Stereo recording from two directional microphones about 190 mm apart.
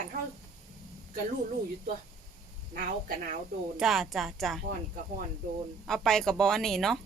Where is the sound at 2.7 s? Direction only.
50° right (ahead or behind).